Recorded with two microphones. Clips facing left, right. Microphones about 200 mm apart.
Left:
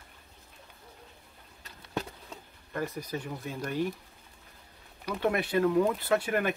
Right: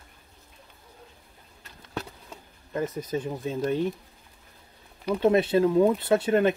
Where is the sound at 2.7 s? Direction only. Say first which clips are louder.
Right 5 dB; 20° right (ahead or behind).